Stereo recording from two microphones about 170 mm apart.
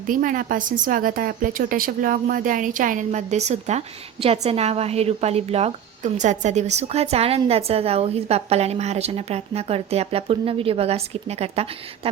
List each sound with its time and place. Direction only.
0.1 s a woman's voice: 55° right (ahead or behind); by 11.7 s 35° right (ahead or behind)